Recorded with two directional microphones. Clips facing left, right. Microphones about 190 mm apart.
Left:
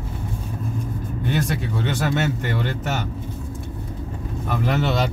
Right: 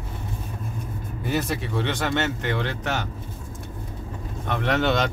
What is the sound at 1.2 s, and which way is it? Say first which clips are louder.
Speech: left 1 dB; 5° right (ahead or behind).